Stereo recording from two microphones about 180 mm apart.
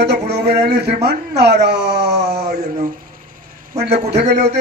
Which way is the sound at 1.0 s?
65° right (ahead or behind).